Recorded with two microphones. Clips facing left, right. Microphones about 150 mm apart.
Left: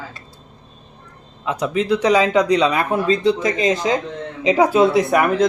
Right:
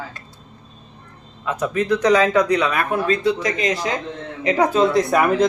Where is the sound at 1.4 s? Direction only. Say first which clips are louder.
Left 1 dB; 15° left (ahead or behind).